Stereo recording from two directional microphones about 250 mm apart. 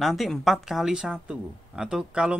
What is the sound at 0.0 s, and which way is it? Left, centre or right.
Speech, centre.